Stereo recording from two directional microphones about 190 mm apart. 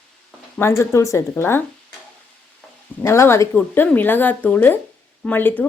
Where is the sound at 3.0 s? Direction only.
15° left (ahead or behind).